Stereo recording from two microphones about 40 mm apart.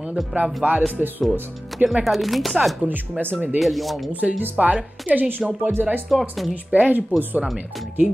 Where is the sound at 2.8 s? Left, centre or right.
Right.